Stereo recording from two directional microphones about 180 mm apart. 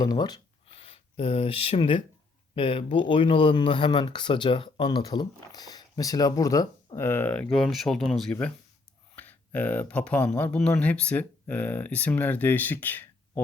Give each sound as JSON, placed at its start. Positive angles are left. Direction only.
{"t": 0.0, "sound": "speech", "side_deg": 20}